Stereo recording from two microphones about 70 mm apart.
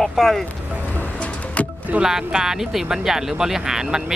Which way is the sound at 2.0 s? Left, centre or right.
Centre.